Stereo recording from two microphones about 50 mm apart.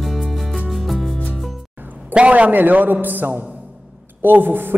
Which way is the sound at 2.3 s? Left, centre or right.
Right.